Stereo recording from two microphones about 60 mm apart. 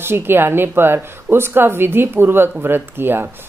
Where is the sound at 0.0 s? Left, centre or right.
Right.